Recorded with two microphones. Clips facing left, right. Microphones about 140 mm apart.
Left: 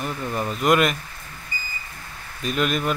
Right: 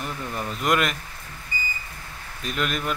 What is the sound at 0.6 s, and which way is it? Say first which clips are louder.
Speech: left 4 dB; 10° left (ahead or behind).